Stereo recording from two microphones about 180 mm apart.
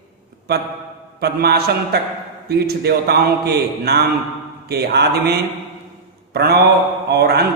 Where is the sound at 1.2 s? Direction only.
60° right (ahead or behind).